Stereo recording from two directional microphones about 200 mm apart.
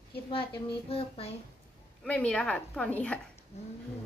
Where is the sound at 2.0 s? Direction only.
5° left (ahead or behind).